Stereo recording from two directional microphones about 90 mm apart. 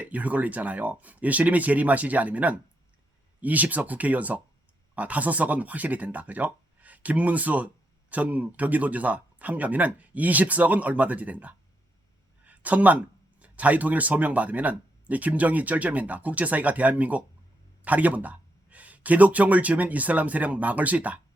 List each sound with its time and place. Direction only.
0.0 s speech: 15° right (ahead or behind)